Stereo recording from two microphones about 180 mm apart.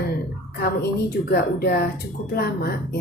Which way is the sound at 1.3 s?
60° left (ahead or behind).